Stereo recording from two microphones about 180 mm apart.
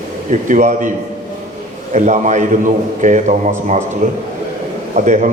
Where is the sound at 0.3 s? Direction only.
45° right (ahead or behind).